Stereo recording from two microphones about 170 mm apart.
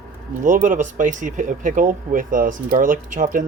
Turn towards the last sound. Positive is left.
turn(degrees=-55)  # may be behind; listen again after turning